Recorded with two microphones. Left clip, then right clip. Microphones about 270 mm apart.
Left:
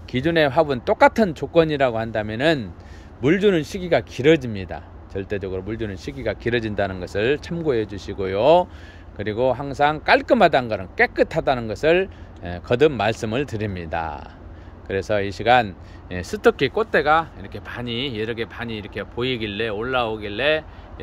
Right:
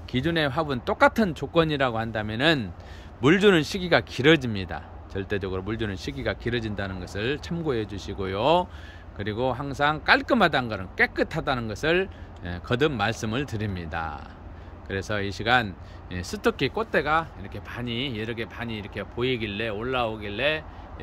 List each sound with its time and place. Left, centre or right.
0.1 s speech: centre